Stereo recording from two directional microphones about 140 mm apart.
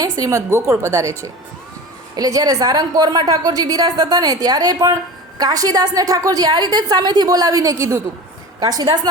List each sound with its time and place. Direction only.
0.0 s a woman's voice: 25° right (ahead or behind)
2.1 s a woman's voice: 25° right (ahead or behind)